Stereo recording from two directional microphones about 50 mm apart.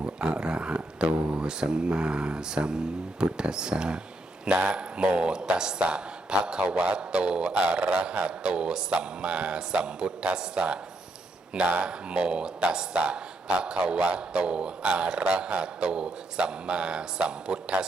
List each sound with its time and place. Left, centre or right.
0.2 s speech: centre